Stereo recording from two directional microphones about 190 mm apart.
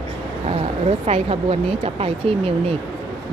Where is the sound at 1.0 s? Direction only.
30° right (ahead or behind).